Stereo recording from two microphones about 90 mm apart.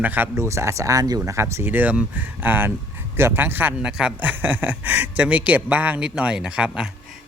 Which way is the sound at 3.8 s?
10° right (ahead or behind).